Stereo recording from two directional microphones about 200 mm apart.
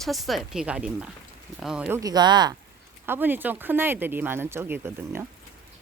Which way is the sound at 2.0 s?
20° right (ahead or behind).